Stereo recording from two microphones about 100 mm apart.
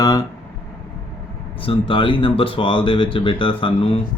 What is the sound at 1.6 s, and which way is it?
Speech, 60° left (ahead or behind).